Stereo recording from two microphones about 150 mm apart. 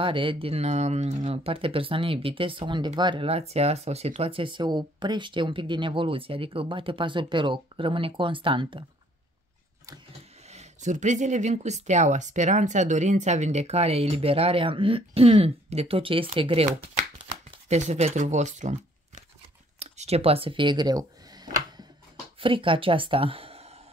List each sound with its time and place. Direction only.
0.0 s speech: 35° right (ahead or behind)
10.4 s speech: 50° right (ahead or behind)
17.6 s speech: 50° right (ahead or behind)
19.8 s a sound: 45° right (ahead or behind); by 21.8 s 25° right (ahead or behind)
22.4 s speech: 35° right (ahead or behind)